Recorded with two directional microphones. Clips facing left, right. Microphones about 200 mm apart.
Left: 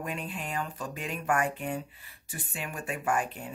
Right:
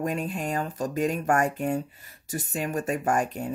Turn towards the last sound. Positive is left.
turn(degrees=-40)  # may be behind; listen again after turning